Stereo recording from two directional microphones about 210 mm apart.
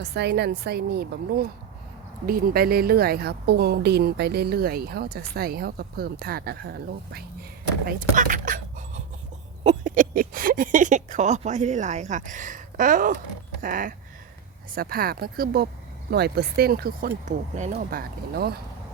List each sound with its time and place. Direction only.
0.0 s a woman's voice: 50° right (ahead or behind)